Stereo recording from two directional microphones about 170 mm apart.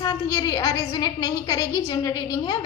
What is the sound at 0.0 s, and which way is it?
A woman's voice, 20° left (ahead or behind).